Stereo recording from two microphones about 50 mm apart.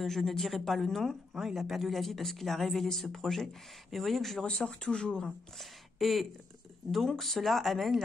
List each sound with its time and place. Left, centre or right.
0.0 s speech: centre
4.5 s speech: centre
5.2 s speech: centre